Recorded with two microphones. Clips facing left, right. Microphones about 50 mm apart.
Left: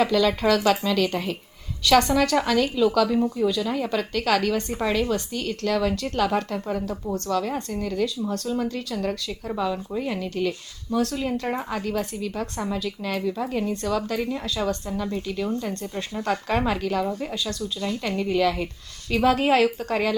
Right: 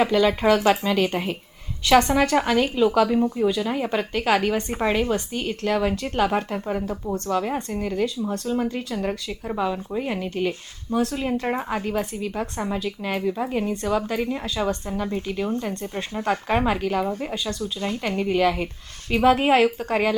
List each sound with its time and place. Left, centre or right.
0.0 s a woman's voice: right